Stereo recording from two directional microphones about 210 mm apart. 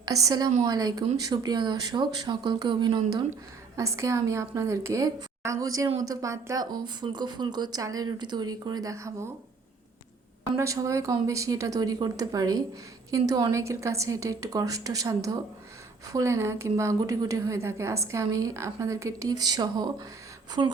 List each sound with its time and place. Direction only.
0.0 s a woman's voice: 15° right (ahead or behind)
10.6 s a woman's voice: 15° right (ahead or behind)
20.6 s speech: 30° right (ahead or behind)